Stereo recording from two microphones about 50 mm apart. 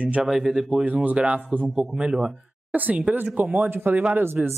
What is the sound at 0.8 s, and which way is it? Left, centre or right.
Speech, right.